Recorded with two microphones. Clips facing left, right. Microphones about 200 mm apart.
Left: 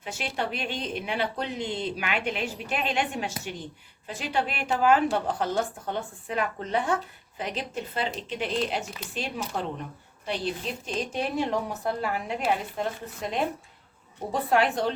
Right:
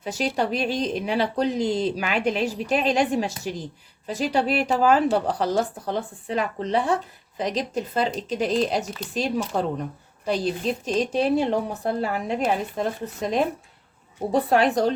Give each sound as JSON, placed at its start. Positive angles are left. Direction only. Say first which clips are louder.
{"t": 0.0, "sound": "speech", "louder": "right 7 dB", "side_deg": -40}